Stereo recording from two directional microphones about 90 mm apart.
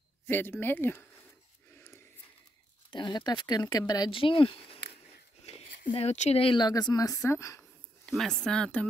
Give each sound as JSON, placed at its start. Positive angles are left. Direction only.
{"t": 0.3, "sound": "speech", "side_deg": 25}
{"t": 2.9, "sound": "speech", "side_deg": 55}
{"t": 4.1, "sound": "speech", "side_deg": 75}
{"t": 6.6, "sound": "speech", "side_deg": 50}
{"t": 8.1, "sound": "speech", "side_deg": 5}